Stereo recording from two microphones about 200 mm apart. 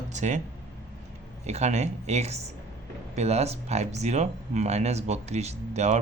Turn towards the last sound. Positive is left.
turn(degrees=-35)  # may be behind; listen again after turning